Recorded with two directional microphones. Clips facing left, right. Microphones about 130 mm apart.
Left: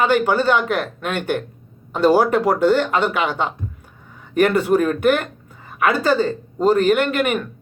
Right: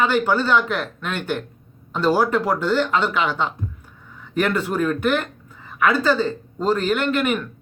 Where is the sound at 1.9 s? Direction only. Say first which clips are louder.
Left 4 dB; 15° left (ahead or behind).